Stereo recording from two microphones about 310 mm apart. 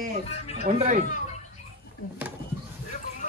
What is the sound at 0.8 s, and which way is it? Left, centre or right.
Speech, right.